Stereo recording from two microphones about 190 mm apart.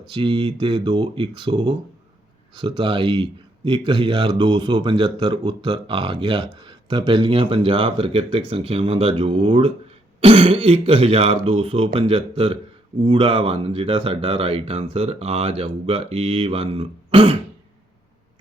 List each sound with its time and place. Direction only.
0.1 s a man's voice: 25° right (ahead or behind)